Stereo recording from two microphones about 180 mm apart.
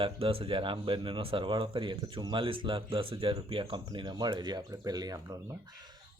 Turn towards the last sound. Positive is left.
turn(degrees=-25)  # may be behind; listen again after turning